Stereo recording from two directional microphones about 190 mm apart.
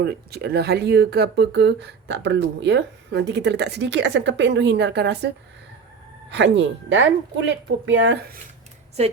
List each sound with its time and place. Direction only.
0.0 s speech: 60° right (ahead or behind)
6.3 s speech: 70° right (ahead or behind)